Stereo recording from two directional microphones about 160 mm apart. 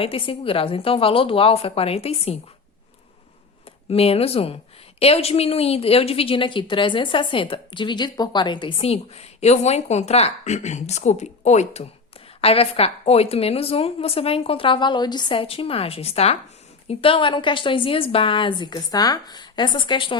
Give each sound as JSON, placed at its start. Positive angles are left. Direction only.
{"t": 0.0, "sound": "a woman's voice", "side_deg": 35}
{"t": 3.8, "sound": "a woman's voice", "side_deg": 40}